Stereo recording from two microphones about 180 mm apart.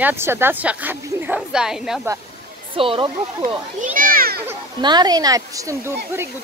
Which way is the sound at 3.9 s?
55° right (ahead or behind).